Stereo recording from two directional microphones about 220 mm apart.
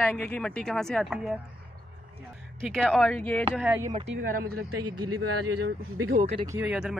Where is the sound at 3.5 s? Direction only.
10° right (ahead or behind).